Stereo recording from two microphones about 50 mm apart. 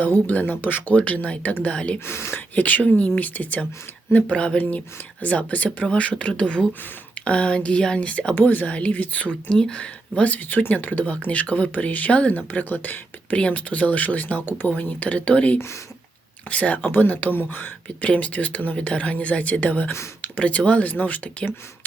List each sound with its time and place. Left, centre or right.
0.0 s speech: left
0.9 s speech: left
2.0 s speech: left
2.6 s speech: left
8.4 s speech: left
9.5 s speech: centre; by 14.7 s left
14.8 s speech: left
17.8 s speech: left